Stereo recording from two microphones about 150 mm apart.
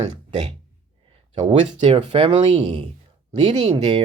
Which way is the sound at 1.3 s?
35° right (ahead or behind).